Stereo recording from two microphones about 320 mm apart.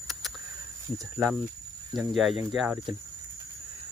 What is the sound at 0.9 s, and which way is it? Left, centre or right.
Speech, centre.